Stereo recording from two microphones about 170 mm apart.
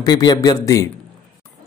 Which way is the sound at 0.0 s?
25° left (ahead or behind).